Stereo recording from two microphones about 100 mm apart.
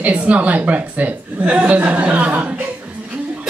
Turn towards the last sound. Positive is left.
turn(degrees=-15)  # may be behind; listen again after turning